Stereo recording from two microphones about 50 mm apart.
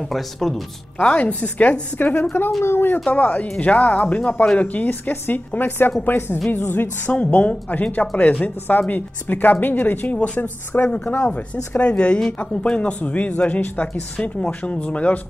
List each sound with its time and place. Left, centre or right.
0.1 s speech: centre
0.9 s speech: left
2.6 s a woman's voice: left
3.1 s a woman's voice: left
7.2 s speech: left
10.1 s speech: left
10.4 s a woman's voice: left
11.7 s speech: left